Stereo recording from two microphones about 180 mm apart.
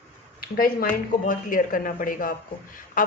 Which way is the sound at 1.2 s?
50° left (ahead or behind).